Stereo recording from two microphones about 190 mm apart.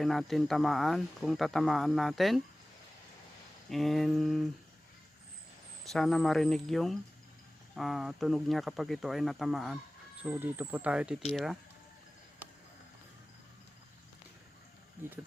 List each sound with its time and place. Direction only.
0.0 s speech: centre (ahead or behind)
3.7 s speech: centre (ahead or behind)
5.8 s speech: centre (ahead or behind)